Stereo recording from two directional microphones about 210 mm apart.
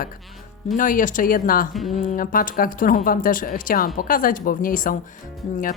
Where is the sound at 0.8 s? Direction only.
40° left (ahead or behind).